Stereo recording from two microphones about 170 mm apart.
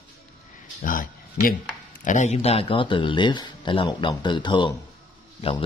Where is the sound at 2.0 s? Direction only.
45° left (ahead or behind).